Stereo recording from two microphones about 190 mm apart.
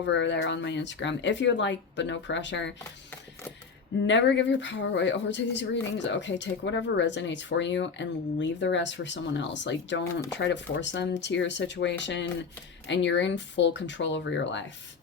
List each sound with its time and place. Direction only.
0.0 s speech: 70° left (ahead or behind)
4.0 s speech: 70° left (ahead or behind)